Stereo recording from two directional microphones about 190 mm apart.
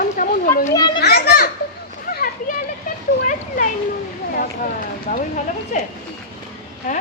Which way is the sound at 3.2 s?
45° left (ahead or behind).